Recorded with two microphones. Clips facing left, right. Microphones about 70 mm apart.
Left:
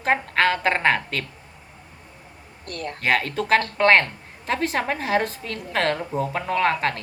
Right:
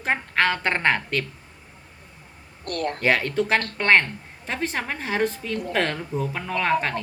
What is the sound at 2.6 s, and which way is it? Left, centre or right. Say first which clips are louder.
Speech: right 5 dB; right.